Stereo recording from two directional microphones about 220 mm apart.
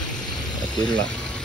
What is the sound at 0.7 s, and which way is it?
Speech, 20° left (ahead or behind).